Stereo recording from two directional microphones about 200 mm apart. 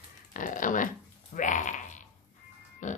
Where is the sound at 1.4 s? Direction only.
40° left (ahead or behind).